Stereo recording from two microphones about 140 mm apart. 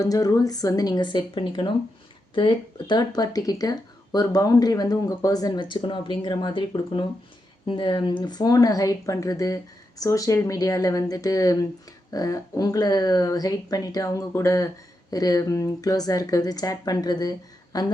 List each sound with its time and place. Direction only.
0.0 s speech: 25° left (ahead or behind)